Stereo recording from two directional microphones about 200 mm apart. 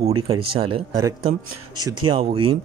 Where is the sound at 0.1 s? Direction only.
25° right (ahead or behind).